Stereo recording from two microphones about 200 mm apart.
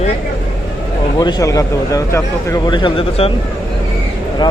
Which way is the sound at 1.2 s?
20° left (ahead or behind).